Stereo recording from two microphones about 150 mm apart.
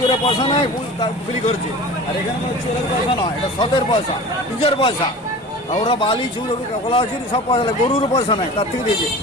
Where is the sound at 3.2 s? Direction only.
35° left (ahead or behind).